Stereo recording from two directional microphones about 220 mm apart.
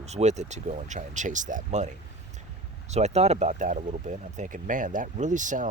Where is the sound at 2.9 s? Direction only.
30° right (ahead or behind).